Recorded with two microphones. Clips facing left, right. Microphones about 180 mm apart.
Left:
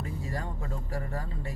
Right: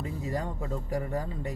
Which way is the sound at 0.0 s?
20° right (ahead or behind).